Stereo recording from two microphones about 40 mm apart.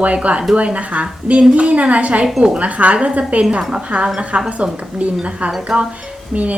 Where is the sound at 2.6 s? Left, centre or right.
Right.